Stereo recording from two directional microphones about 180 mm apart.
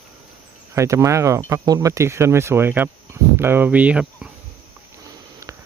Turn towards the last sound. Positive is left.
turn(degrees=-5)  # may be behind; listen again after turning